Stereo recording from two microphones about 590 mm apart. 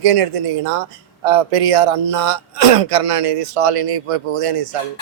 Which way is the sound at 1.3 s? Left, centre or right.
Right.